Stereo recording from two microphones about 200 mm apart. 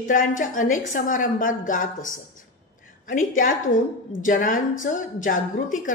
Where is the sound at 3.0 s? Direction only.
40° left (ahead or behind).